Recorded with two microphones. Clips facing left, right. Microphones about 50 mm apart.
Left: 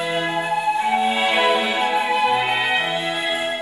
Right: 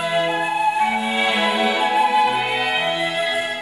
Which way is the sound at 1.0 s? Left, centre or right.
Centre.